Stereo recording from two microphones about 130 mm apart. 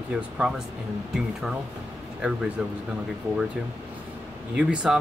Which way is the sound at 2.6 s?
5° right (ahead or behind).